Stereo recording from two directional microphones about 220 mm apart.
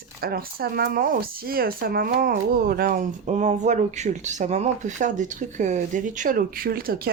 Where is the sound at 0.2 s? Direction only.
45° right (ahead or behind).